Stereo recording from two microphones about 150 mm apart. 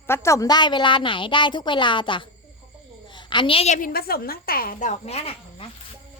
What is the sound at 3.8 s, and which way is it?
A woman's voice, 90° left.